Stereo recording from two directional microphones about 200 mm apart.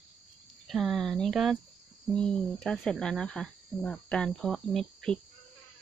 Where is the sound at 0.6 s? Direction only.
Centre (ahead or behind).